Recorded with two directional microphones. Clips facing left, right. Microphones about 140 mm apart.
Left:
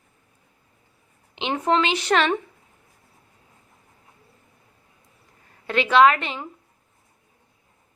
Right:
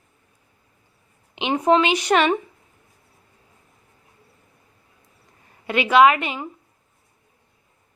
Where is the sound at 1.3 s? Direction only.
15° right (ahead or behind).